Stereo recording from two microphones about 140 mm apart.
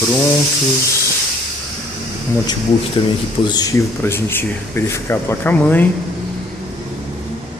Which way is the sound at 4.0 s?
15° left (ahead or behind).